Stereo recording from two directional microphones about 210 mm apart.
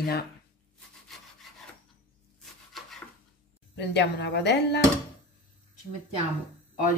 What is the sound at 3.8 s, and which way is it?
Speech, 55° left (ahead or behind).